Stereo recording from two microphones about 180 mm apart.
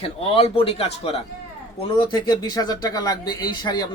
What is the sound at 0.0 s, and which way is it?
A man's voice, 30° left (ahead or behind).